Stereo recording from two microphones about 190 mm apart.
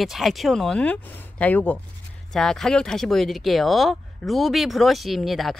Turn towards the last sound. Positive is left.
turn(degrees=0)  # may be behind; listen again after turning